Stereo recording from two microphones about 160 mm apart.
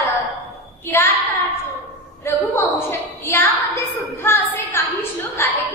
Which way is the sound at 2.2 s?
15° left (ahead or behind).